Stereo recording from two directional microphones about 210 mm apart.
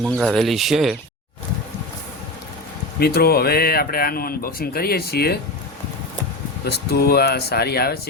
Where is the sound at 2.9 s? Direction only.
45° left (ahead or behind).